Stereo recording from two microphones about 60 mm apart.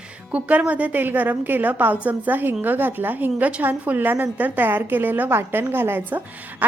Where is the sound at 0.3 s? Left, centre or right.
Right.